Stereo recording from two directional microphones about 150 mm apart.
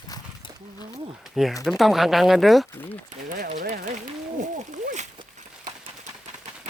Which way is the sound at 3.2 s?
75° right (ahead or behind).